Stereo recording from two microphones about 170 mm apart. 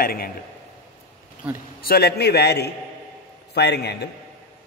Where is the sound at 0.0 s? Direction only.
60° left (ahead or behind).